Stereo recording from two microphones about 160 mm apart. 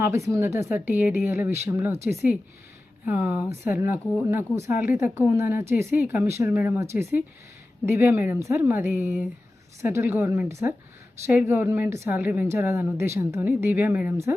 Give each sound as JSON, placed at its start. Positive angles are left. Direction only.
{"t": 0.0, "sound": "a woman's voice", "side_deg": -20}